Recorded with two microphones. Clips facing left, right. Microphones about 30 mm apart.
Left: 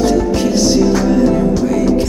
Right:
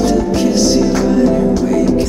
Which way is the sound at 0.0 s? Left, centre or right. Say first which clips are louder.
Even; centre.